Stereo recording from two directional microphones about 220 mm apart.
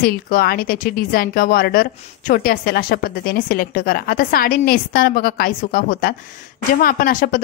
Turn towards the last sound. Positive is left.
turn(degrees=40)  # may be behind; listen again after turning